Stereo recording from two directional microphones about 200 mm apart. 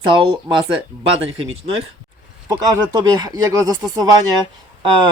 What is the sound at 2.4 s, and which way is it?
Speech, 20° right (ahead or behind).